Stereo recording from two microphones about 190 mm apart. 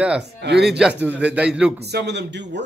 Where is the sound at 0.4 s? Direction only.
60° right (ahead or behind).